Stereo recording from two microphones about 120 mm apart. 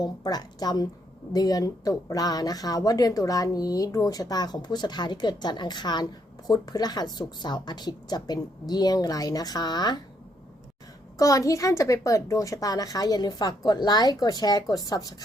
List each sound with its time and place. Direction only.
0.0 s speech: 35° left (ahead or behind)
11.2 s speech: 30° left (ahead or behind)